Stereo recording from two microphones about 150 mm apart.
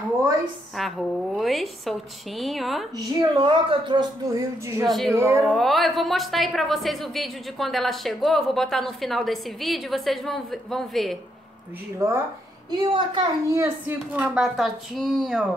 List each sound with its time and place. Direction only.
0.7 s speech: centre (ahead or behind)
3.2 s speech: 30° right (ahead or behind)
4.8 s speech: centre (ahead or behind)
5.1 s speech: 20° right (ahead or behind)
5.5 s speech: centre (ahead or behind)
12.6 s a woman's voice: 30° right (ahead or behind)
13.5 s speech: 15° right (ahead or behind); by 15.4 s centre (ahead or behind)